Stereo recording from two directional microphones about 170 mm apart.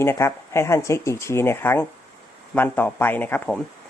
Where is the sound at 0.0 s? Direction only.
15° left (ahead or behind).